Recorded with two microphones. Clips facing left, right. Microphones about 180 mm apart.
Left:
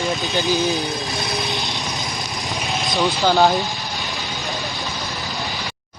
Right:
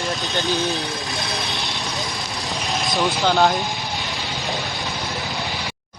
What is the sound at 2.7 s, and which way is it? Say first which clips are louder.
Speech: left 1 dB; centre (ahead or behind).